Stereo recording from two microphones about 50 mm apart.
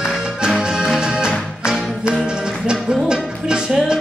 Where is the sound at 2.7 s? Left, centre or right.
Centre.